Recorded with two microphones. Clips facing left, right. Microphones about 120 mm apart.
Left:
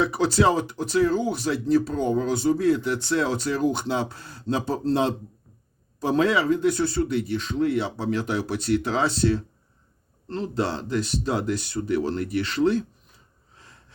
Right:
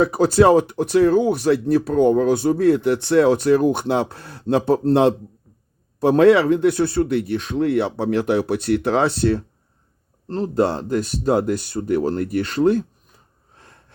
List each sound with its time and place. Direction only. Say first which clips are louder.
0.0 s speech: right 6 dB; 45° right (ahead or behind)
10.2 s speech: right 7 dB; 40° right (ahead or behind)